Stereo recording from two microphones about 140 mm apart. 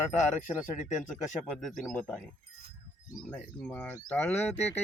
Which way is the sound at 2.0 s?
5° left (ahead or behind).